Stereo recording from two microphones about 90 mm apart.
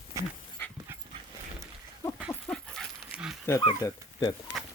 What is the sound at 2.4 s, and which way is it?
Dog, 5° left (ahead or behind).